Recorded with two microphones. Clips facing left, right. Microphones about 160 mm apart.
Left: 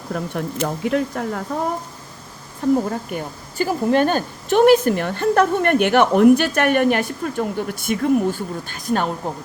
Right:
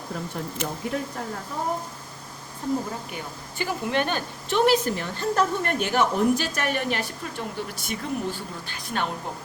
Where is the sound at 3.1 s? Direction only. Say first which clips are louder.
Left 7 dB; 45° left (ahead or behind).